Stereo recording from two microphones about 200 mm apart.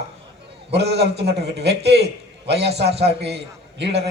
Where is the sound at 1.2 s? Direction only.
60° right (ahead or behind).